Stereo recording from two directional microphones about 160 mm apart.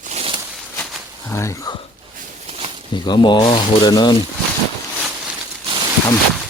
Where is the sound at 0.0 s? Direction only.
40° right (ahead or behind).